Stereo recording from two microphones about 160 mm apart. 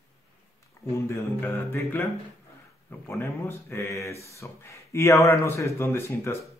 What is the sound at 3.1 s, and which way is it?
Speech, 15° left (ahead or behind).